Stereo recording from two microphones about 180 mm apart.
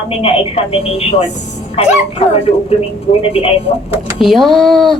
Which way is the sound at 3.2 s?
30° left (ahead or behind).